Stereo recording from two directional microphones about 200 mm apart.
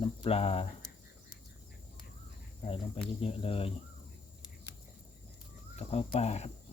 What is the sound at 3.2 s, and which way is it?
Speech, 30° left (ahead or behind).